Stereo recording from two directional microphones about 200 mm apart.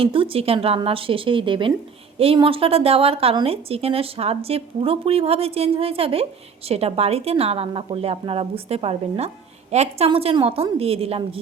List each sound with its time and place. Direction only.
0.0 s a woman's voice: 25° right (ahead or behind)